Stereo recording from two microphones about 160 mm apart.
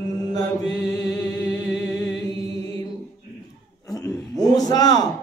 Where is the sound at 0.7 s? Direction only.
10° left (ahead or behind).